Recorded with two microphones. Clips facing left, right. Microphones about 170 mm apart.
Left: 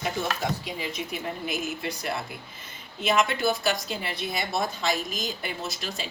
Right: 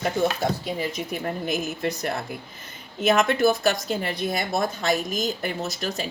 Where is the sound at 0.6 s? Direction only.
45° right (ahead or behind).